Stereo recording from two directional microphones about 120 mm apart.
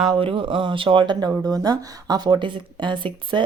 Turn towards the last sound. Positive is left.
turn(degrees=-40)  # may be behind; listen again after turning